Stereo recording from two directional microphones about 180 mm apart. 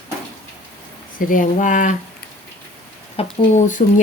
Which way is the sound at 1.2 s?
50° left (ahead or behind).